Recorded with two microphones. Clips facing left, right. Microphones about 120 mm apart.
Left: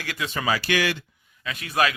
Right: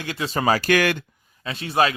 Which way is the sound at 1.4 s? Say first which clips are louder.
Right 3 dB; 30° right (ahead or behind).